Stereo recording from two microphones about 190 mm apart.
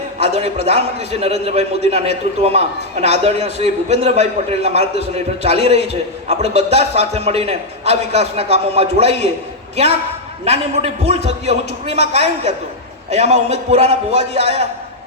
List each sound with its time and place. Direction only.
0.2 s a man's voice: 30° right (ahead or behind)
11.0 s a man's voice: 30° right (ahead or behind)